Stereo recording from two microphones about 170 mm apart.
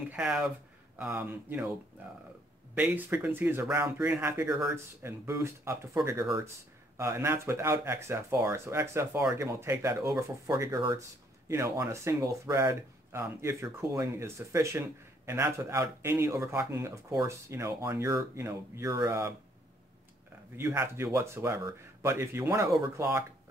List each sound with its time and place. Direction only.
0.1 s speech: 5° right (ahead or behind)
2.7 s speech: 10° right (ahead or behind)
7.0 s speech: 15° right (ahead or behind)
20.5 s speech: 15° right (ahead or behind)